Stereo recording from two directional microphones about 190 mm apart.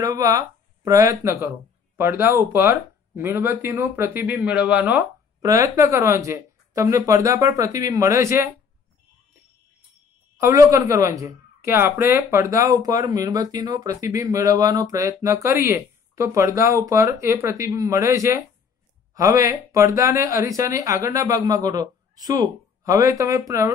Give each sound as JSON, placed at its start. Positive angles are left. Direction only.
{"t": 0.0, "sound": "speech", "side_deg": -20}
{"t": 10.3, "sound": "speech", "side_deg": -15}
{"t": 19.7, "sound": "speech", "side_deg": -15}